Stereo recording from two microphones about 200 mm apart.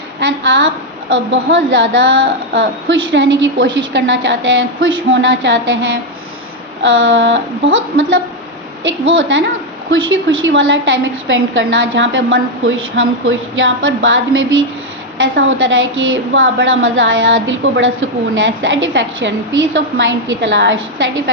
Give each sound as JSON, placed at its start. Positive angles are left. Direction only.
{"t": 0.2, "sound": "a woman's voice", "side_deg": -65}